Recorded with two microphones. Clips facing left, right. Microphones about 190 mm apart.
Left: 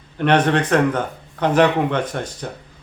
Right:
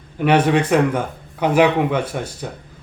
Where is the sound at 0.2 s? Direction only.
10° right (ahead or behind).